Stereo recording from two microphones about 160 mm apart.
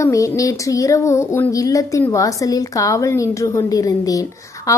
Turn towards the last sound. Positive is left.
turn(degrees=20)  # may be behind; listen again after turning